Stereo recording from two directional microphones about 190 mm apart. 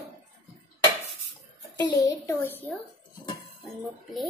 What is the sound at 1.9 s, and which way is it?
Speech, 20° left (ahead or behind).